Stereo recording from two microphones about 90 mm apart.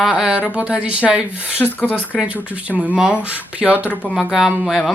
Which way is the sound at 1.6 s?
20° left (ahead or behind).